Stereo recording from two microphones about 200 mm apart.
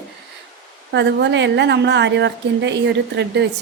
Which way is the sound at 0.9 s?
60° right (ahead or behind).